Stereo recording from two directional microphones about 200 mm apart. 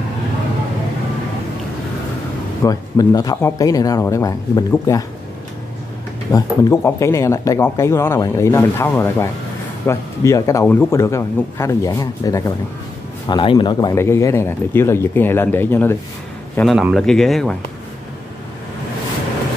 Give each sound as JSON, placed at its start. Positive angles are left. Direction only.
{"t": 2.6, "sound": "a man's voice", "side_deg": 15}
{"t": 6.3, "sound": "a man's voice", "side_deg": 15}